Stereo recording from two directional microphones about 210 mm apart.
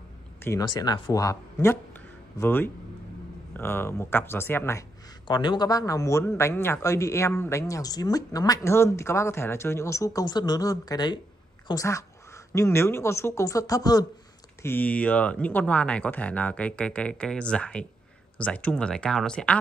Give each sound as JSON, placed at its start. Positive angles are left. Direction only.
{"t": 0.4, "sound": "speech", "side_deg": 15}